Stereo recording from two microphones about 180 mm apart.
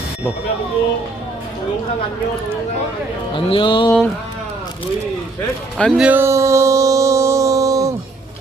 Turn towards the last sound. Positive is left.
turn(degrees=-20)  # may be behind; listen again after turning